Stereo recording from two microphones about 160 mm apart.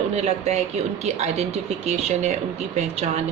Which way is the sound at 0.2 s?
45° right (ahead or behind).